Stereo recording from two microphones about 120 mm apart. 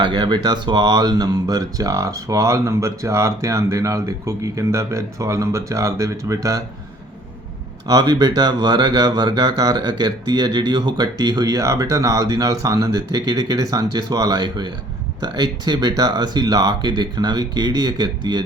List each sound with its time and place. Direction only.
0.0 s speech: 40° right (ahead or behind)
7.9 s speech: 35° right (ahead or behind)